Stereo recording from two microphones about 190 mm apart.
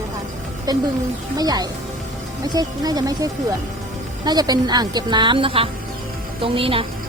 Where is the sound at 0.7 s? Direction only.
20° right (ahead or behind).